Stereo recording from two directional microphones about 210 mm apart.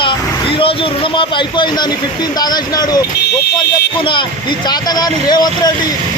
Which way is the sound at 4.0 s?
25° left (ahead or behind).